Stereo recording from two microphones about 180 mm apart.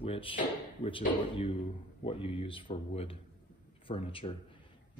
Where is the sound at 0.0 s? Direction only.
30° left (ahead or behind).